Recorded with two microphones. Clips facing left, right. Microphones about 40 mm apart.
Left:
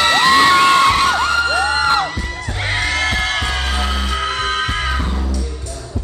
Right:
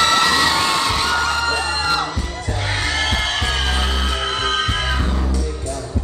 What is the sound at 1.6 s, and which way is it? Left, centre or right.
Music, left.